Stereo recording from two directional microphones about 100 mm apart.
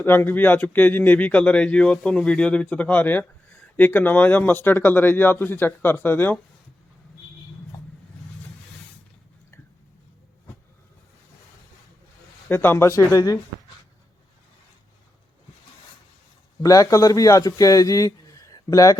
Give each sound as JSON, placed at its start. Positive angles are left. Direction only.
{"t": 0.0, "sound": "speech", "side_deg": 20}
{"t": 12.5, "sound": "speech", "side_deg": 25}
{"t": 16.6, "sound": "a man's voice", "side_deg": 35}